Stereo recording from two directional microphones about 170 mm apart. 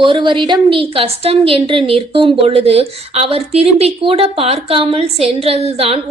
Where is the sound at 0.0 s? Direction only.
30° right (ahead or behind).